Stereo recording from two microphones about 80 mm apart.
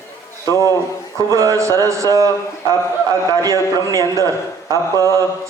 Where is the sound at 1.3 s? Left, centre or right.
Right.